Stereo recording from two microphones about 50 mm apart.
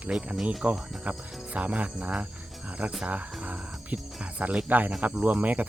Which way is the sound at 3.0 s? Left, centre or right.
Right.